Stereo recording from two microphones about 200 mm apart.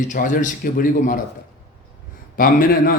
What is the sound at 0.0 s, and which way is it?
A man's voice, 40° left (ahead or behind).